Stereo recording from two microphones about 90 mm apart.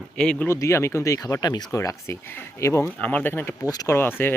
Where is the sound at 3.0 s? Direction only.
15° left (ahead or behind).